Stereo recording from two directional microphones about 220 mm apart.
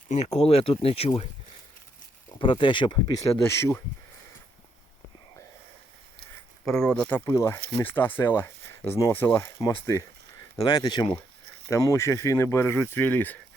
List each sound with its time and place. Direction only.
0.1 s speech: 30° left (ahead or behind)
2.4 s speech: 20° left (ahead or behind)
6.7 s speech: 5° left (ahead or behind)